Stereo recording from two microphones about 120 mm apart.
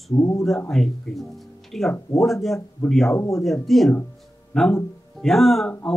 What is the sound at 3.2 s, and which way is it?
Speech, 25° left (ahead or behind).